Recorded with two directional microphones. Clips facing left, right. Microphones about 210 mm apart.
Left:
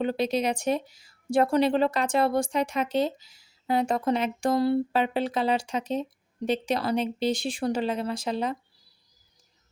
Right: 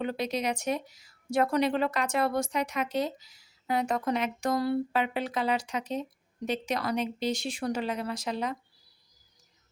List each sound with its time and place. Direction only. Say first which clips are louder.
0.0 s speech: left 5 dB; 30° left (ahead or behind)